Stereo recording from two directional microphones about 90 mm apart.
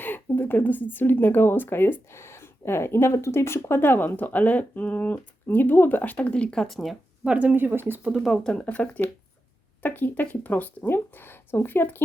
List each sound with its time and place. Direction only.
0.0 s speech: 20° left (ahead or behind); by 6.9 s 5° left (ahead or behind)
7.3 s speech: 15° right (ahead or behind)
8.1 s speech: centre (ahead or behind)
8.4 s speech: 10° left (ahead or behind)